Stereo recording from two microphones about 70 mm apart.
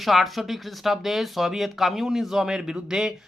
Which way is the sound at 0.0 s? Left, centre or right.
Centre.